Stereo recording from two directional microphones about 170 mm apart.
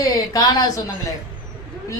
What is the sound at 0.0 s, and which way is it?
Speech, 20° left (ahead or behind).